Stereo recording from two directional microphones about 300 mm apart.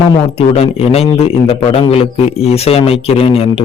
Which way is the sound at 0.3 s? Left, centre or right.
Centre.